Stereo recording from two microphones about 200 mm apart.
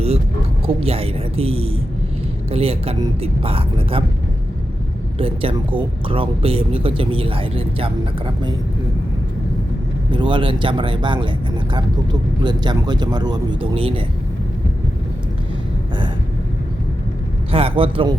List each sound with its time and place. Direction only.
0.7 s speech: 30° right (ahead or behind)
5.1 s speech: 30° right (ahead or behind)
10.1 s speech: 25° right (ahead or behind)
12.4 s speech: 20° right (ahead or behind)
17.5 s speech: 25° right (ahead or behind)